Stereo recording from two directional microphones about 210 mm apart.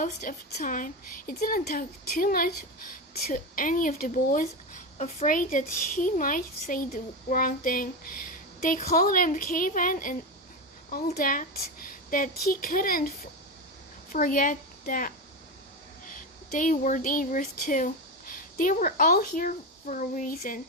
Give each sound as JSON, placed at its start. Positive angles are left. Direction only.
{"t": 0.0, "sound": "a woman's voice", "side_deg": 40}